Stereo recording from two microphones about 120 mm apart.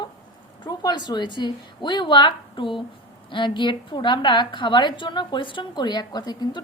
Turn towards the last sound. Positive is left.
turn(degrees=35)  # may be behind; listen again after turning